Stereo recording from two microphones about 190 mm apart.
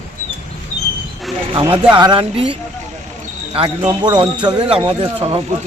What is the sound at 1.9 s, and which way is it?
Speech, 25° right (ahead or behind).